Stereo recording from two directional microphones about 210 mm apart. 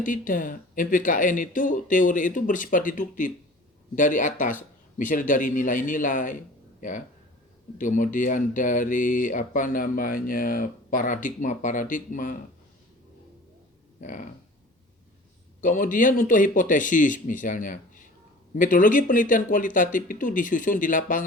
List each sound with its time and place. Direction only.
0.0 s speech: 40° left (ahead or behind)
7.8 s speech: 40° left (ahead or behind)
14.0 s speech: 35° left (ahead or behind)
15.6 s speech: 40° left (ahead or behind)